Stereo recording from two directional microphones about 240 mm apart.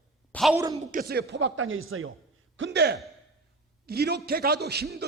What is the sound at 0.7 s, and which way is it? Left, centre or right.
Speech, right.